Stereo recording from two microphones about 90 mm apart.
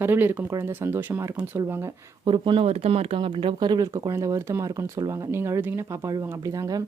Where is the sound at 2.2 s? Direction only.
70° right (ahead or behind).